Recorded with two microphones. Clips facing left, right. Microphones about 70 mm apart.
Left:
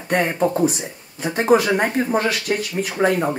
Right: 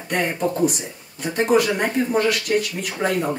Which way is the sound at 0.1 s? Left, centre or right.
Left.